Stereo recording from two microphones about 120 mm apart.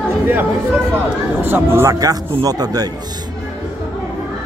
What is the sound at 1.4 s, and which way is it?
Speech, 20° right (ahead or behind).